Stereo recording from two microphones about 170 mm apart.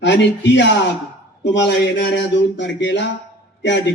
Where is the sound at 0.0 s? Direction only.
90° left.